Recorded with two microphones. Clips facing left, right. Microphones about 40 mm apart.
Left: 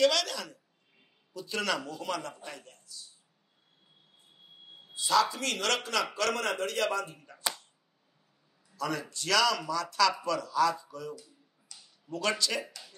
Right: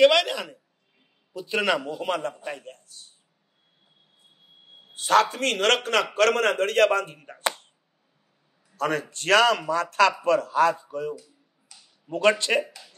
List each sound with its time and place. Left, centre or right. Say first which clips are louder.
0.0 s a sound: right 8 dB; right
1.3 s a man's voice: right 8 dB; right
4.9 s speech: right 6 dB; right
8.7 s a man's voice: right 7 dB; right
12.6 s speech: right 3 dB; centre